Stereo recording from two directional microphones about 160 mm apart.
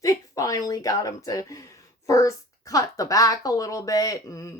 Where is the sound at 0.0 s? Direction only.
20° left (ahead or behind).